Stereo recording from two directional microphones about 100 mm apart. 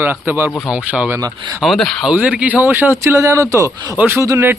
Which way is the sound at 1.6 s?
Centre (ahead or behind).